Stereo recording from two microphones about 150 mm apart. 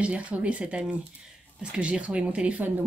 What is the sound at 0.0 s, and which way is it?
Speech, 10° right (ahead or behind).